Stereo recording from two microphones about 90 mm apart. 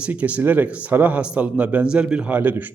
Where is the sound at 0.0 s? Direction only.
15° right (ahead or behind).